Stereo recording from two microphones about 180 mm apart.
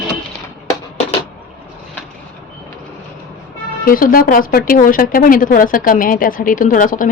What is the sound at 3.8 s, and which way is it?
A woman's voice, 50° left (ahead or behind).